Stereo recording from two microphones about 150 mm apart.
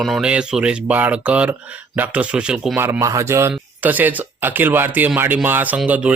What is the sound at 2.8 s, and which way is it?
Speech, 20° right (ahead or behind).